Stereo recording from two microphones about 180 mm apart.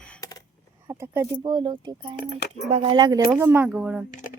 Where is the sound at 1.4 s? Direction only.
25° right (ahead or behind).